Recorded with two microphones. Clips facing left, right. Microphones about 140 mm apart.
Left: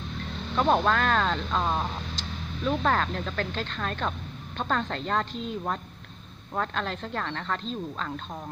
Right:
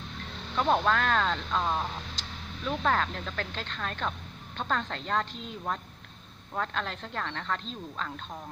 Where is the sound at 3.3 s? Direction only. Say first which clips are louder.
Left 5 dB; 10° right (ahead or behind).